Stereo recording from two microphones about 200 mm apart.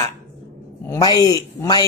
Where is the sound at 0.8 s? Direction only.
15° left (ahead or behind).